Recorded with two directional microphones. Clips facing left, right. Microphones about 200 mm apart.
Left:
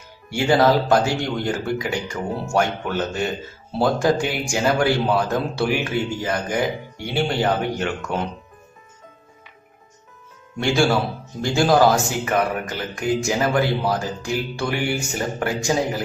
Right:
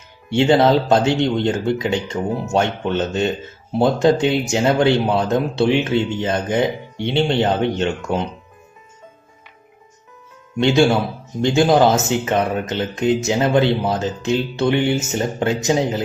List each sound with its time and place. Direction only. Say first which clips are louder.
0.3 s speech: right 3 dB; 25° right (ahead or behind)
10.6 s speech: right 4 dB; 20° right (ahead or behind)